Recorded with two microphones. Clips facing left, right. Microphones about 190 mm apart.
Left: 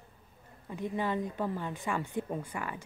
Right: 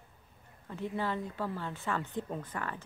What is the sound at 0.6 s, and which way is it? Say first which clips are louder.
A woman's voice: left 2 dB; 15° left (ahead or behind).